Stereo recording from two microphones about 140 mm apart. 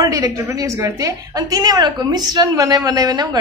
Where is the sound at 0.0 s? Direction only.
25° right (ahead or behind).